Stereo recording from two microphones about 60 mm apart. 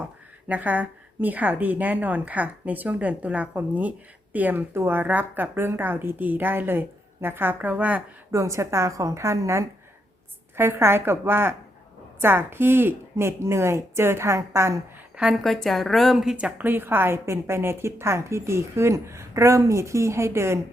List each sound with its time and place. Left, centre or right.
0.0 s a woman's voice: right
4.7 s a woman's voice: right
5.5 s a woman's voice: right
8.3 s a woman's voice: right
15.1 s a sound: centre
15.4 s speech: centre
16.6 s a woman's voice: right